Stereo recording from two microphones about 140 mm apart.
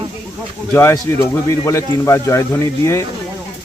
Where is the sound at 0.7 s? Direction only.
20° left (ahead or behind).